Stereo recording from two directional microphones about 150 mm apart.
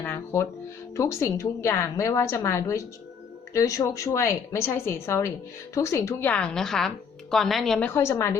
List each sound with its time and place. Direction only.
0.0 s music: 15° left (ahead or behind)
0.9 s a woman's voice: 20° left (ahead or behind); by 7.9 s 5° left (ahead or behind)
7.9 s a woman's voice: 15° left (ahead or behind)